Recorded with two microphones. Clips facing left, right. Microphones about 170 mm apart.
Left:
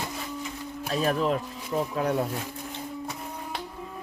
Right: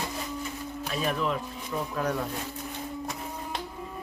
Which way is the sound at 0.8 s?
40° left (ahead or behind).